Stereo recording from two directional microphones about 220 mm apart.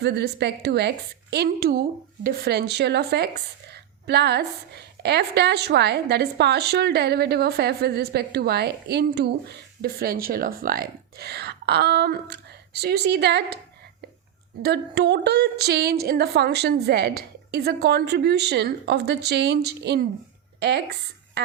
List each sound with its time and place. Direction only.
0.0 s a woman's voice: 50° right (ahead or behind)
14.6 s a woman's voice: 50° right (ahead or behind)